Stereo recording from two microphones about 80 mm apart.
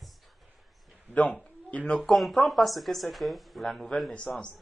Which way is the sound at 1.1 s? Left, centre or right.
Centre.